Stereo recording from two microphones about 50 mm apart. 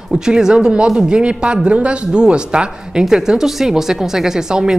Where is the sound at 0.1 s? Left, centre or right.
Centre.